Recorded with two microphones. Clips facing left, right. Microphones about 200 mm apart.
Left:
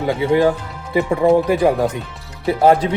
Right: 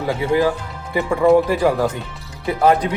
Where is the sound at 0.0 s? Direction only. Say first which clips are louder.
Left 3 dB; 25° left (ahead or behind).